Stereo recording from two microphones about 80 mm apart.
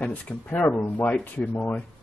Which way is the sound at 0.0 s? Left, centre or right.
Centre.